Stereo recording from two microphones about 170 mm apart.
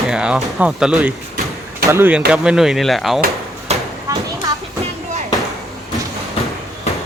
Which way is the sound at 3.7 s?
40° right (ahead or behind).